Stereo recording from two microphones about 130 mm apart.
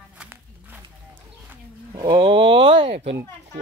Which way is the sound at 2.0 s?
40° right (ahead or behind).